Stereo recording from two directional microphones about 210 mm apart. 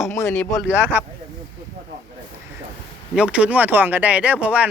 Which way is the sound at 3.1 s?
5° right (ahead or behind).